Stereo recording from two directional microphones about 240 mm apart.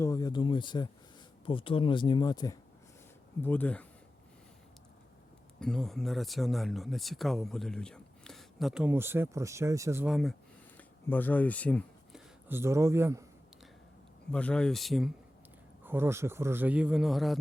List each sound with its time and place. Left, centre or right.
0.0 s a sound: centre
1.5 s speech: left
3.4 s speech: centre
5.5 s speech: centre
10.8 s a sound: centre
12.5 s a man's voice: centre
14.3 s a man's voice: centre